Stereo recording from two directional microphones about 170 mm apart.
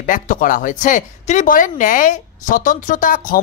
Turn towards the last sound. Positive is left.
turn(degrees=55)  # may be behind; listen again after turning